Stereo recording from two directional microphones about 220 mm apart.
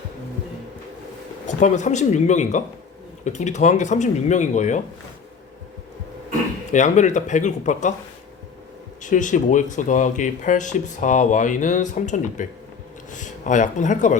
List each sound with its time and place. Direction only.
1.5 s speech: 35° left (ahead or behind)
6.7 s speech: 35° left (ahead or behind)
9.0 s speech: 35° left (ahead or behind)